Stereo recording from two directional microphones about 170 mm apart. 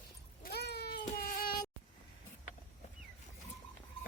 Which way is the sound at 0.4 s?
70° left (ahead or behind).